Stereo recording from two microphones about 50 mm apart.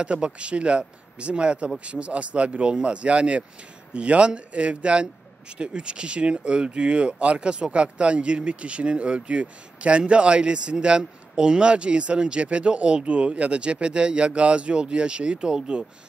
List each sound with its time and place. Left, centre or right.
0.0 s speech: right